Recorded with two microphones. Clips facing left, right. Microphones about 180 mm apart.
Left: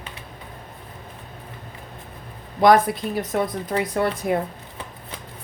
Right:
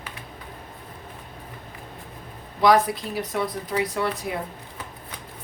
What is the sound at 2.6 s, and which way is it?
A woman's voice, 50° left (ahead or behind).